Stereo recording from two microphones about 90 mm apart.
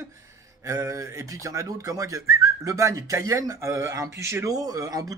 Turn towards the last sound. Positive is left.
turn(degrees=-40)  # may be behind; listen again after turning